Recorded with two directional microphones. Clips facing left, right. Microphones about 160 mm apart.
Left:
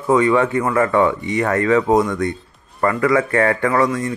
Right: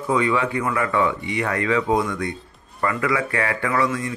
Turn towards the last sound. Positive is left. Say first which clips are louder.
# left 5 dB
turn(degrees=40)  # may be behind; listen again after turning